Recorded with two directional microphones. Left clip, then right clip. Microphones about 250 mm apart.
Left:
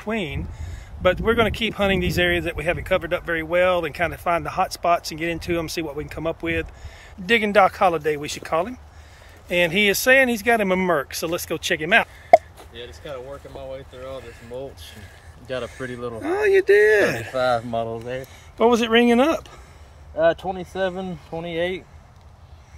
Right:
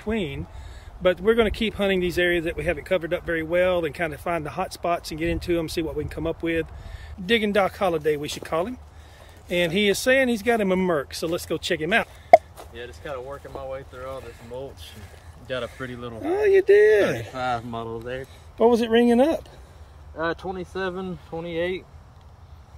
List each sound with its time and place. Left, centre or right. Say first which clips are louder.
0.0 s speech: left 1 dB; centre
16.2 s speech: left 1 dB; centre
17.3 s speech: left 6 dB; left
18.6 s speech: left 2 dB; centre
20.2 s speech: left 8 dB; left